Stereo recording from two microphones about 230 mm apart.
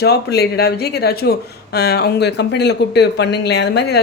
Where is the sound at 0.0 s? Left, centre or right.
Left.